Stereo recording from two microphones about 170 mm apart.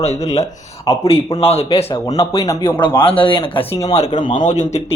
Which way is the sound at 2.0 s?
20° left (ahead or behind).